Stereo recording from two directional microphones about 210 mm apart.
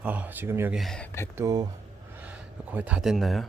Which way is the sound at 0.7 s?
Centre (ahead or behind).